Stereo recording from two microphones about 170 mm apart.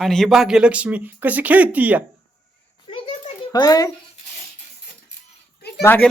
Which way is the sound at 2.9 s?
35° left (ahead or behind).